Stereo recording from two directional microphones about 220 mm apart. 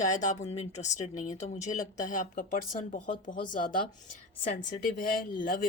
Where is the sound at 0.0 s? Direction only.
35° left (ahead or behind).